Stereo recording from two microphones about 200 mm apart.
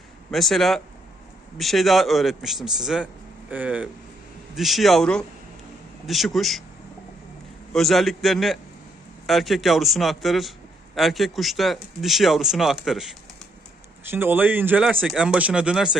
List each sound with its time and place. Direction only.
0.3 s speech: centre (ahead or behind)
7.7 s speech: centre (ahead or behind)